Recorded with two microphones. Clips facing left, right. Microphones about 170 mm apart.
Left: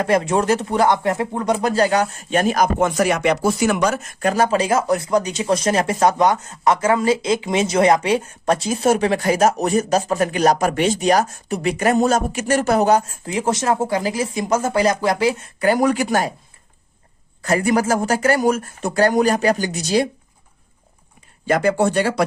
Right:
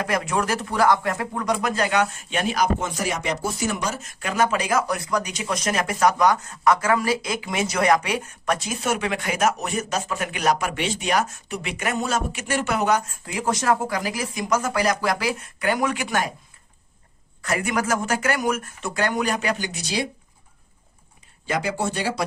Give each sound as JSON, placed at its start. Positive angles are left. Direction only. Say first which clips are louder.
{"t": 0.0, "sound": "speech", "louder": "left 6 dB", "side_deg": 30}
{"t": 4.2, "sound": "speech", "louder": "left 5 dB", "side_deg": 40}
{"t": 17.4, "sound": "speech", "louder": "left 7 dB", "side_deg": 30}
{"t": 21.4, "sound": "speech", "louder": "left 8 dB", "side_deg": 55}